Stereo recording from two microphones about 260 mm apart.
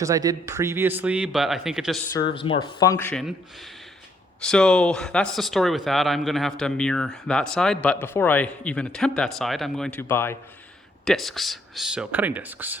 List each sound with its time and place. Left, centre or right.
0.0 s speech: centre
2.3 s speech: centre
4.4 s speech: centre